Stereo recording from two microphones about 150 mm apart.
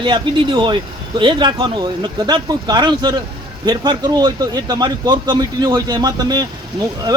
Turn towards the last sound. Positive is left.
turn(degrees=-25)  # may be behind; listen again after turning